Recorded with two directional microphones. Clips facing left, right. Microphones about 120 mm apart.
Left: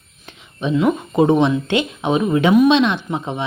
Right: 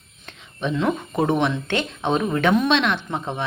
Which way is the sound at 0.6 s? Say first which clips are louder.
Left 5 dB; 15° left (ahead or behind).